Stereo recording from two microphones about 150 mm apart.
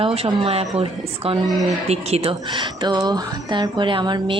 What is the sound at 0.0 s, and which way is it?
Speech, 40° right (ahead or behind).